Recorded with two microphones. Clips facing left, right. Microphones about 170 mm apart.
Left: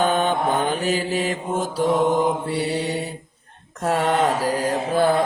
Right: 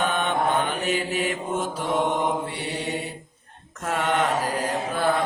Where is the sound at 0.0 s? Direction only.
35° left (ahead or behind).